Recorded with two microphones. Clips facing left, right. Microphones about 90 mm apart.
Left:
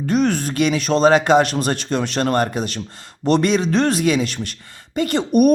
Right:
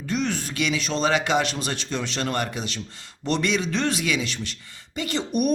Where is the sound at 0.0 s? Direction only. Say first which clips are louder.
Left 8 dB; 50° left (ahead or behind).